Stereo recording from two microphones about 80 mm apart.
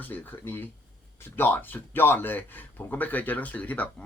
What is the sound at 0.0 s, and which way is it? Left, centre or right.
Speech, left.